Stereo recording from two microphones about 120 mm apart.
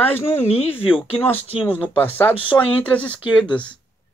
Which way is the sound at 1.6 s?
15° left (ahead or behind).